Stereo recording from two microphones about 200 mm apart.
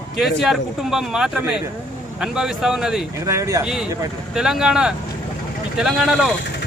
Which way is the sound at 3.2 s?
15° right (ahead or behind).